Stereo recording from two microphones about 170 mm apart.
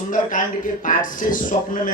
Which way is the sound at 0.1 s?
50° left (ahead or behind).